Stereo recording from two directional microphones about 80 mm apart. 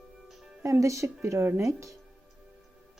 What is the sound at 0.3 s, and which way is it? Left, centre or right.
Music, centre.